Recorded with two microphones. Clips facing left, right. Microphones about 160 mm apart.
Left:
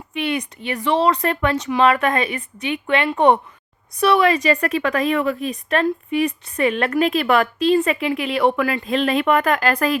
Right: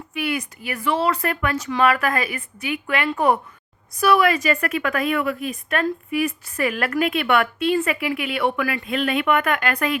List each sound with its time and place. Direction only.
0.1 s a woman's voice: 30° left (ahead or behind)